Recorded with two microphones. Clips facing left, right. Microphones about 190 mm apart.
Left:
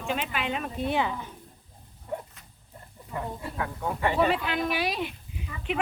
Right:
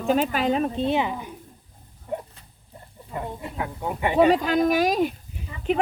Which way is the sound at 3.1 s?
20° right (ahead or behind).